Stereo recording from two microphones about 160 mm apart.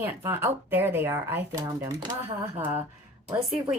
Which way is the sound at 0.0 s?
15° right (ahead or behind).